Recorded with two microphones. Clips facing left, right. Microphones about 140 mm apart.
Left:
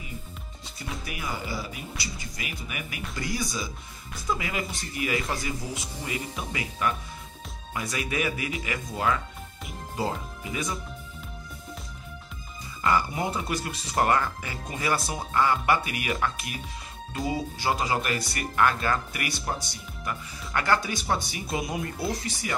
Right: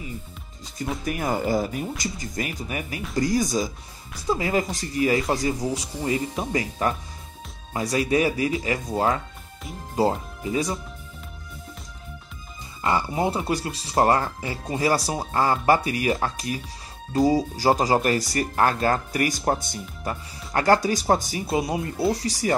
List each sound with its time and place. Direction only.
1.0 s speech: 45° right (ahead or behind)
12.8 s speech: 30° right (ahead or behind)